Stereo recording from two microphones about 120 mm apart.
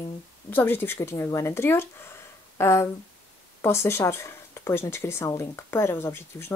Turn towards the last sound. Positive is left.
turn(degrees=20)  # may be behind; listen again after turning